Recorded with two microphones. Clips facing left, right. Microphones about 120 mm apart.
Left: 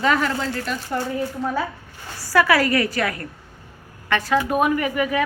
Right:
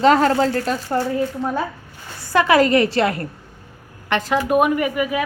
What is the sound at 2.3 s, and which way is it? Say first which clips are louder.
A woman's voice: right 3 dB; 20° right (ahead or behind).